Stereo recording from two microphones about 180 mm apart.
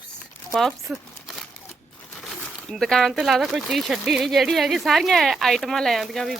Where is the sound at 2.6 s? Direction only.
Centre (ahead or behind).